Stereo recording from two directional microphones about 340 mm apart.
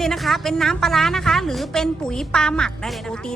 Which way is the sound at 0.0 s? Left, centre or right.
Centre.